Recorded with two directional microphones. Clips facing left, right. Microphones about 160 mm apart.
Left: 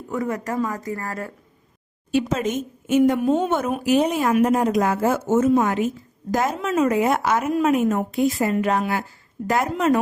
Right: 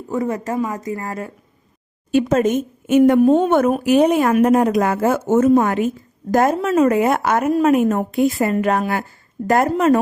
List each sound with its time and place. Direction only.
0.1 s speech: 25° right (ahead or behind)
2.1 s a woman's voice: 50° right (ahead or behind)
3.2 s a woman's voice: 45° right (ahead or behind)